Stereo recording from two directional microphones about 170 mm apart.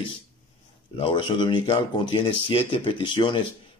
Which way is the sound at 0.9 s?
30° left (ahead or behind).